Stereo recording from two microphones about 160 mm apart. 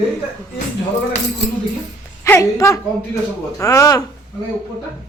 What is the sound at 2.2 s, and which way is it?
A woman's voice, 20° left (ahead or behind).